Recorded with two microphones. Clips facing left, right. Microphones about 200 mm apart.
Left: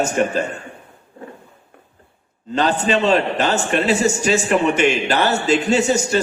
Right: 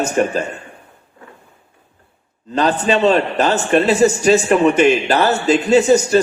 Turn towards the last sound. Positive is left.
turn(degrees=-40)  # may be behind; listen again after turning